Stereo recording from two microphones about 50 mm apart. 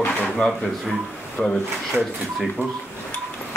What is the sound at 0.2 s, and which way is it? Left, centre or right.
Drawer open or close, centre.